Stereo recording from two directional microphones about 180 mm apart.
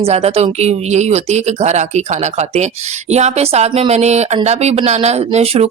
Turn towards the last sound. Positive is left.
turn(degrees=-35)  # may be behind; listen again after turning